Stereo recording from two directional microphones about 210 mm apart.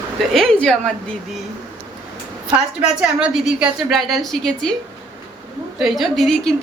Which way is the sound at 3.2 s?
5° right (ahead or behind).